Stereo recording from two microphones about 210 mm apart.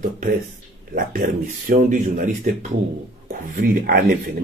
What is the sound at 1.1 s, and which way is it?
Speech, 40° right (ahead or behind).